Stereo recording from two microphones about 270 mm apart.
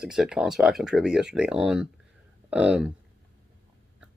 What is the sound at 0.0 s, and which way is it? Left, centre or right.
Speech, centre.